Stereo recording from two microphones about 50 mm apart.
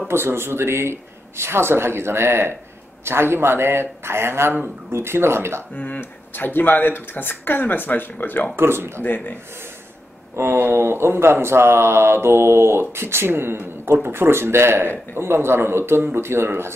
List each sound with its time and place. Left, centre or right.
0.1 s speech: right
5.8 s speech: left
8.5 s speech: right
9.0 s speech: left
10.3 s speech: right